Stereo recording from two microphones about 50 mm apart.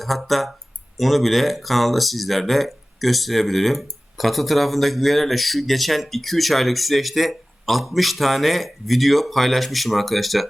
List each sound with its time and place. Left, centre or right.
0.0 s speech: centre